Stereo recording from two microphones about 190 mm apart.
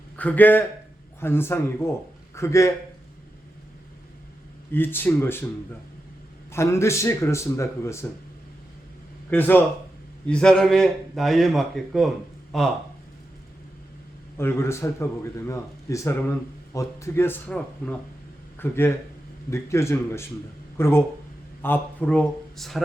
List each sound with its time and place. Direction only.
0.2 s speech: 10° left (ahead or behind)
4.7 s speech: 10° left (ahead or behind)
6.5 s speech: 15° left (ahead or behind)
9.3 s a man's voice: 10° left (ahead or behind)
14.3 s speech: 15° left (ahead or behind)